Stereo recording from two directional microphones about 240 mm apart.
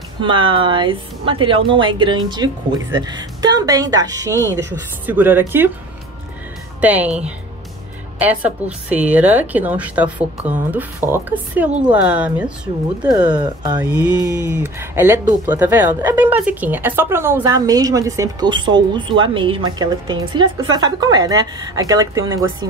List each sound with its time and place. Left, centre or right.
0.2 s speech: right
6.8 s speech: centre
13.1 s speech: centre